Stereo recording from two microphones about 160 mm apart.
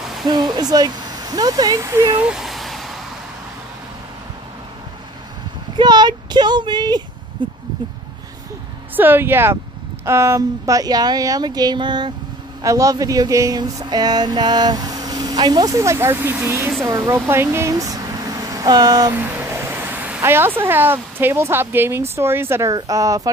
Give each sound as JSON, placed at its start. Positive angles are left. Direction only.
{"t": 0.0, "sound": "a sound", "side_deg": 0}
{"t": 0.3, "sound": "speech", "side_deg": -25}
{"t": 5.8, "sound": "speech", "side_deg": -25}
{"t": 7.4, "sound": "a sound", "side_deg": -30}
{"t": 8.9, "sound": "speech", "side_deg": -10}
{"t": 19.1, "sound": "speech", "side_deg": -15}